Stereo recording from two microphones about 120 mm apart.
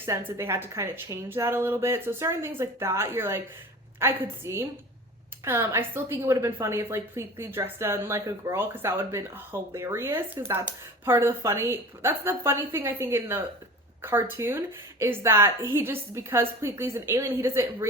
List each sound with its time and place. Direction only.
0.0 s a woman's voice: 15° right (ahead or behind)